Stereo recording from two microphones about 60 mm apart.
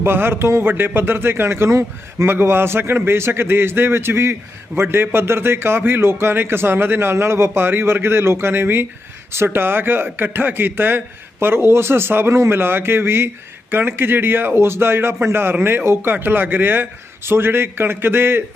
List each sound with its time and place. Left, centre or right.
0.0 s a man's voice: right